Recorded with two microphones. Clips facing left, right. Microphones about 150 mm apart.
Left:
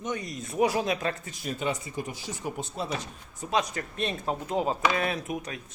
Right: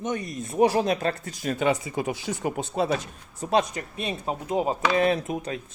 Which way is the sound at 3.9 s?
10° right (ahead or behind).